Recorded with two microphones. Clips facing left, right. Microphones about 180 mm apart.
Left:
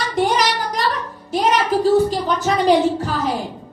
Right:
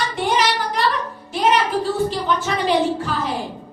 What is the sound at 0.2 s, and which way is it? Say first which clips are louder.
Child singing: left 3 dB; 40° left (ahead or behind).